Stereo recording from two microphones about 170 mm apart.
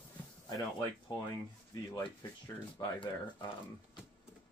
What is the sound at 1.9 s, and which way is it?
Speech, 25° left (ahead or behind).